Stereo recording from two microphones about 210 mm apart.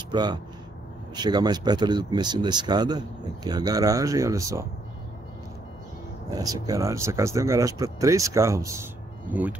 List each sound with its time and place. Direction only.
0.1 s speech: 20° right (ahead or behind)
6.3 s speech: 15° right (ahead or behind)